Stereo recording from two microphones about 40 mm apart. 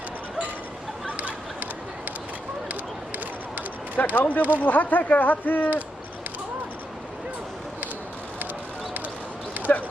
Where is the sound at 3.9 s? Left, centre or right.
Left.